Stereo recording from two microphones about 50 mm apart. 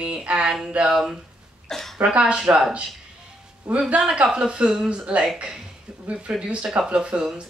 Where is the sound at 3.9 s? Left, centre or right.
Right.